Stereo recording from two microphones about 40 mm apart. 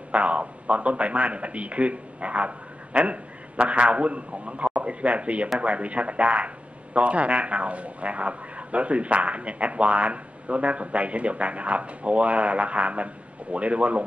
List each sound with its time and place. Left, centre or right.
0.1 s a man's voice: right